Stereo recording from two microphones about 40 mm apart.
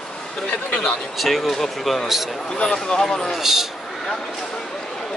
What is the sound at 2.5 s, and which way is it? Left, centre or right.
Speech, centre.